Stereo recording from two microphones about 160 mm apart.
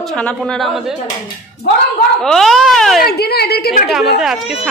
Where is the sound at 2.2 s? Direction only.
5° left (ahead or behind).